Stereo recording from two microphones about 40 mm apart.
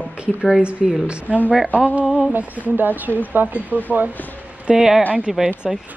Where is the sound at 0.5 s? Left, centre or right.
Right.